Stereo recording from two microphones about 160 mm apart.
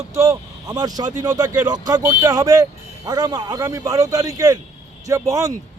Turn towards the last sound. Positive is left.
turn(degrees=-20)  # may be behind; listen again after turning